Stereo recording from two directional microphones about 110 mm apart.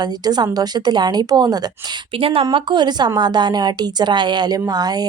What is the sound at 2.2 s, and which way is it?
Speech, 55° right (ahead or behind).